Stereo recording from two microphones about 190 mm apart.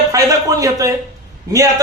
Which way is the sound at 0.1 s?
20° right (ahead or behind).